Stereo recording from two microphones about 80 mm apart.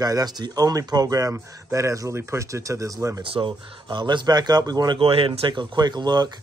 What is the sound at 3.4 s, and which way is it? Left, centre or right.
A man's voice, right.